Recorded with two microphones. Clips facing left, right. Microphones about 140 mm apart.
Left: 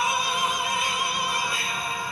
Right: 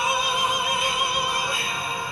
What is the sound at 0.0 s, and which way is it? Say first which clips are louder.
Music: right 1 dB; 20° right (ahead or behind).